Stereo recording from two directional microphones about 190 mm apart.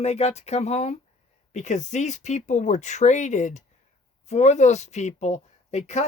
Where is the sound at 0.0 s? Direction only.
35° left (ahead or behind).